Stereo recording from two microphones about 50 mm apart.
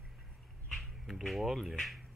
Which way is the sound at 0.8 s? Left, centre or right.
Centre.